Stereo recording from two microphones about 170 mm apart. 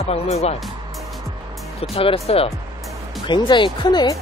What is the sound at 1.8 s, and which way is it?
Speech, 35° left (ahead or behind).